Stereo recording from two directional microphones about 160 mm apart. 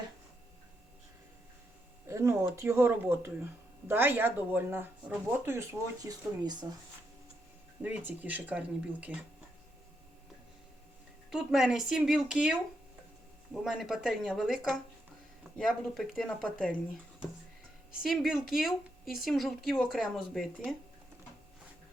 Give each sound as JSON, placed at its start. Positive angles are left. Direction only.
{"t": 2.0, "sound": "speech", "side_deg": -20}
{"t": 7.8, "sound": "speech", "side_deg": -10}
{"t": 11.3, "sound": "speech", "side_deg": -5}
{"t": 13.7, "sound": "speech", "side_deg": 0}
{"t": 18.0, "sound": "speech", "side_deg": 0}